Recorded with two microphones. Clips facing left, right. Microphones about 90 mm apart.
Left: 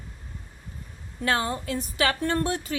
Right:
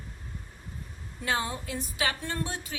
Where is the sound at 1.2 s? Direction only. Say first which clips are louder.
Left 5 dB; 65° left (ahead or behind).